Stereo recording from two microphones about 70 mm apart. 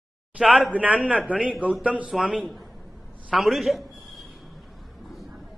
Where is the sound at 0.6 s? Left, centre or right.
Centre.